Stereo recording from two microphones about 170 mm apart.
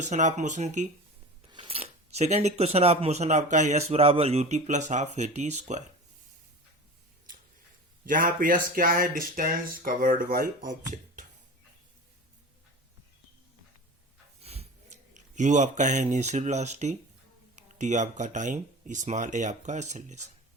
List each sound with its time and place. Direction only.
0.0 s speech: 45° right (ahead or behind)
1.5 s speech: 30° right (ahead or behind)
8.0 s speech: 50° right (ahead or behind)
14.4 s speech: 35° right (ahead or behind)